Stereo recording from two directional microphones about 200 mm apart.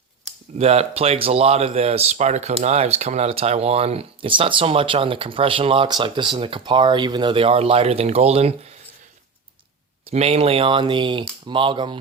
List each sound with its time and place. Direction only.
0.6 s speech: 30° right (ahead or behind)
10.1 s speech: 30° right (ahead or behind)